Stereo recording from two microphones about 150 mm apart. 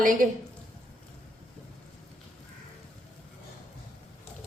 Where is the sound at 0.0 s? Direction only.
60° right (ahead or behind).